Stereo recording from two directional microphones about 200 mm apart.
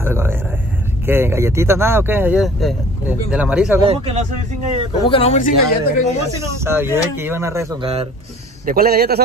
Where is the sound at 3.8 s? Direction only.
30° right (ahead or behind).